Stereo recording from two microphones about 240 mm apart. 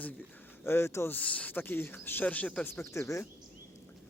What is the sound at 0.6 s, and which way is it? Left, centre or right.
Speech, centre.